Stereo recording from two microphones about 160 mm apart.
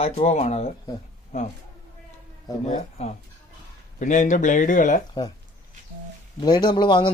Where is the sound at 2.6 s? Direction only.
45° left (ahead or behind).